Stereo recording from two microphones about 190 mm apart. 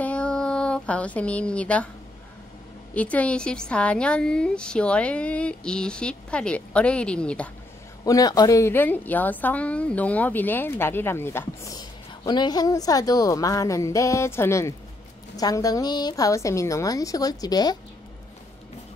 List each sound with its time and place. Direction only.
0.0 s a sound: 5° left (ahead or behind)
2.9 s a woman's voice: 5° left (ahead or behind)
8.0 s a woman's voice: 20° left (ahead or behind)